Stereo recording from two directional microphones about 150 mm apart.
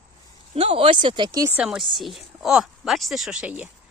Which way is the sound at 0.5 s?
40° right (ahead or behind).